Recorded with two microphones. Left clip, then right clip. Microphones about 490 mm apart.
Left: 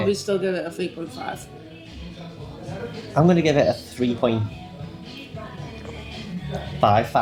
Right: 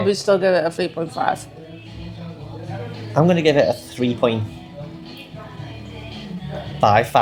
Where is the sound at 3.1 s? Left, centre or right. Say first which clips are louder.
Right 3 dB; centre.